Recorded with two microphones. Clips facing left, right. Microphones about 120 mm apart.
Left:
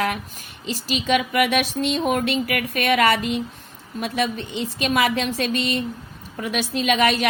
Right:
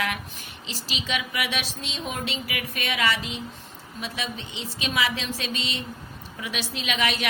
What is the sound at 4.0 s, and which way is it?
A woman's voice, 55° left (ahead or behind).